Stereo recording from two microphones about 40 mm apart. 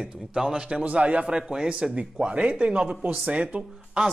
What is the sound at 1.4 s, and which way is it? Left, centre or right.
A man's voice, centre.